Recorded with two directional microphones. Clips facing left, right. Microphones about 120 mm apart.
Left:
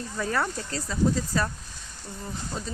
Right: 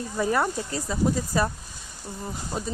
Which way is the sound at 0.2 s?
15° right (ahead or behind).